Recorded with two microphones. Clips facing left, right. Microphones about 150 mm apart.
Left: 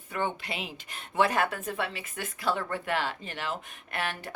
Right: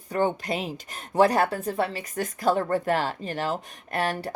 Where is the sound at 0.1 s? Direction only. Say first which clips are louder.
Right 7 dB; 40° right (ahead or behind).